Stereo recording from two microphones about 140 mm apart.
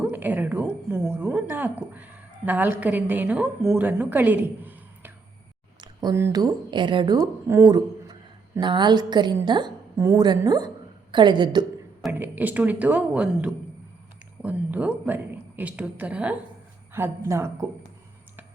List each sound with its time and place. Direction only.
0.0 s a woman's voice: 10° right (ahead or behind)
5.8 s a sound: 30° right (ahead or behind)
6.1 s speech: 20° right (ahead or behind)
7.4 s a woman's voice: 15° right (ahead or behind)
8.6 s a woman's voice: 30° right (ahead or behind)
12.2 s a woman's voice: 10° right (ahead or behind)